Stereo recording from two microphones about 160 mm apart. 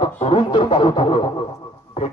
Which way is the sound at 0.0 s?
35° left (ahead or behind).